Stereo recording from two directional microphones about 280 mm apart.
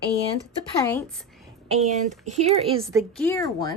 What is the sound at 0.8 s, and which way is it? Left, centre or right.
Speech, centre.